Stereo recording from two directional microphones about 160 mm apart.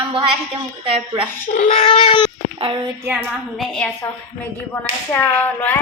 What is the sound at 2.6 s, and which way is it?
Speech, 30° right (ahead or behind).